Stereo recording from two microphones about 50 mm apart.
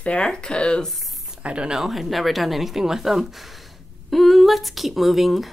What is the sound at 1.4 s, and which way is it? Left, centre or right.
Speech, right.